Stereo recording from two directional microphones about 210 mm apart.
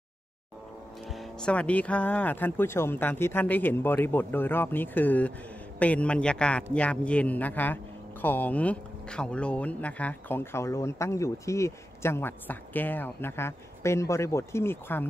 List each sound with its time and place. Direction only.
1.1 s a man's voice: centre (ahead or behind)